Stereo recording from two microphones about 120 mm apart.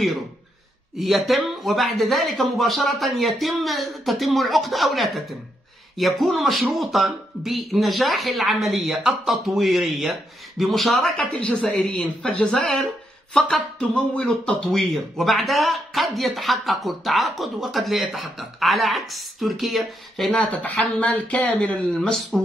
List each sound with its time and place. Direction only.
0.9 s a woman's voice: centre (ahead or behind)